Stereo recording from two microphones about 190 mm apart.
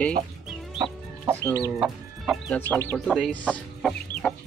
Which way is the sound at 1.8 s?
Centre (ahead or behind).